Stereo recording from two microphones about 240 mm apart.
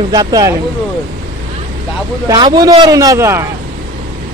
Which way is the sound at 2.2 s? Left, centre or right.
Centre.